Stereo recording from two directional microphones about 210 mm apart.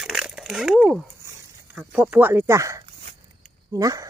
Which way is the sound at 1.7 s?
5° right (ahead or behind).